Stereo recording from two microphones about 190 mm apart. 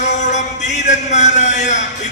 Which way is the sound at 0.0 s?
40° left (ahead or behind).